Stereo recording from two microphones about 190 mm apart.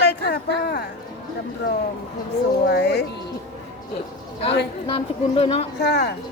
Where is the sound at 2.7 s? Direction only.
60° left (ahead or behind).